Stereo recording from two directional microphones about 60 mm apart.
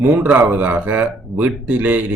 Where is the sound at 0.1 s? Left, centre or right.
Right.